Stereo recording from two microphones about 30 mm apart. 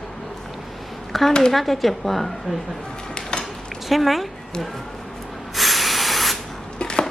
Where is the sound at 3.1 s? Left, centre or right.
Left.